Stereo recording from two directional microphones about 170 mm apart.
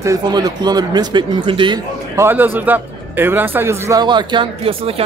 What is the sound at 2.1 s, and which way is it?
Speech, 15° right (ahead or behind).